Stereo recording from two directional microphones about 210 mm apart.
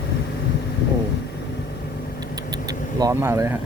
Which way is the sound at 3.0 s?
15° right (ahead or behind).